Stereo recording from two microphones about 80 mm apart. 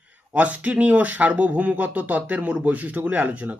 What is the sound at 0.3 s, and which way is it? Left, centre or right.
Speech, centre.